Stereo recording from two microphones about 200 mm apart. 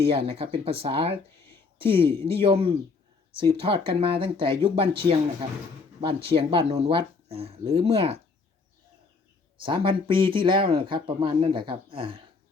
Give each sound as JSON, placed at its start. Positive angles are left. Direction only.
{"t": 0.0, "sound": "speech", "side_deg": -25}
{"t": 9.6, "sound": "speech", "side_deg": -25}